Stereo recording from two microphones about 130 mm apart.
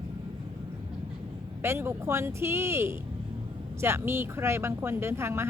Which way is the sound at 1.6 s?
20° right (ahead or behind).